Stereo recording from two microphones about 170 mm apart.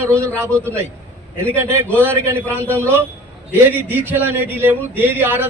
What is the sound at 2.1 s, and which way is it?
A man's voice, 15° right (ahead or behind).